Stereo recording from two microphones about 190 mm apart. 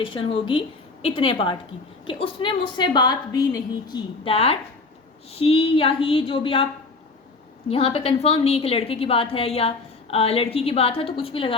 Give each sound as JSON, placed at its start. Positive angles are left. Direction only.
{"t": 0.1, "sound": "a woman's voice", "side_deg": 30}
{"t": 7.7, "sound": "a woman's voice", "side_deg": 30}